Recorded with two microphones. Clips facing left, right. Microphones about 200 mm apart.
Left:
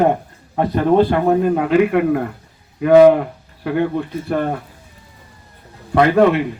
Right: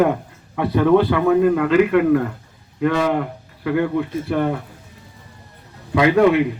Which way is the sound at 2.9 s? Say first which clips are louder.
Left 10 dB; 50° left (ahead or behind).